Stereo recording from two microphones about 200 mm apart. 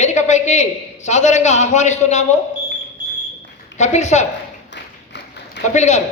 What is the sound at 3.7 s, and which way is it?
Speech, 35° left (ahead or behind).